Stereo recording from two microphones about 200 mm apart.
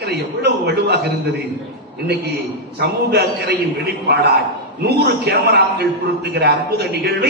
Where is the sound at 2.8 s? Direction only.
55° right (ahead or behind).